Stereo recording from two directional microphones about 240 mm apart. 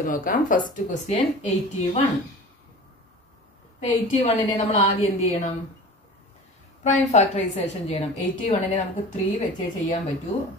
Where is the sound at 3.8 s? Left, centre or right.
Left.